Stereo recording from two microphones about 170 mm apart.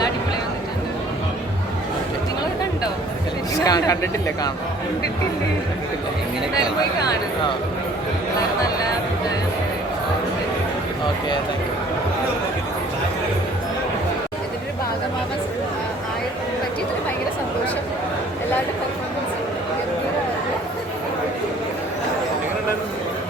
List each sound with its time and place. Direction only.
3.5 s speech: 20° left (ahead or behind)